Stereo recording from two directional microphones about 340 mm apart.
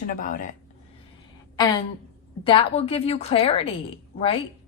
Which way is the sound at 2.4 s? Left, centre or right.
Centre.